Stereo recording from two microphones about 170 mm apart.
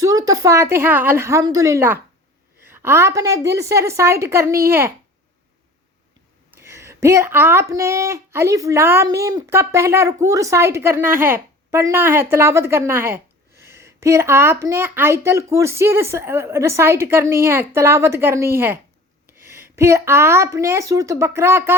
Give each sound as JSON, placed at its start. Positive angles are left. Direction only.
{"t": 0.0, "sound": "speech", "side_deg": -20}
{"t": 6.5, "sound": "speech", "side_deg": -15}